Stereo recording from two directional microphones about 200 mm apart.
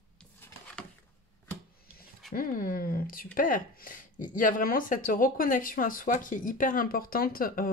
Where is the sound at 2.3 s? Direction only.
45° left (ahead or behind).